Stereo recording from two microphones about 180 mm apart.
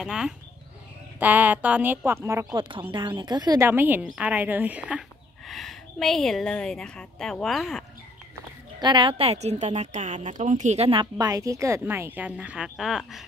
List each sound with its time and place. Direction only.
0.0 s a woman's voice: 5° right (ahead or behind)
8.7 s speech: 25° right (ahead or behind); by 13.2 s centre (ahead or behind)